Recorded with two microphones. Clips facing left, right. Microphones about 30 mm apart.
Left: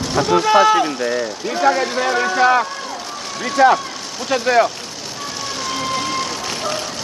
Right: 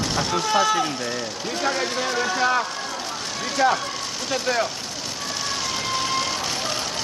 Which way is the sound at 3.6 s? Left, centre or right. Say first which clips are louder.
Left 8 dB; centre.